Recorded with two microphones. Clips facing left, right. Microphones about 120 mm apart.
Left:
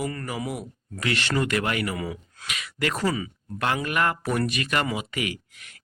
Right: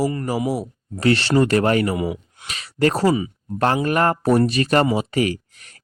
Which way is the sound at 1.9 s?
20° right (ahead or behind).